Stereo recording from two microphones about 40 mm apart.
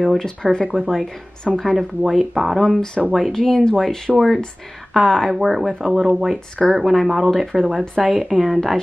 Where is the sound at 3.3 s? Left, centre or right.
Centre.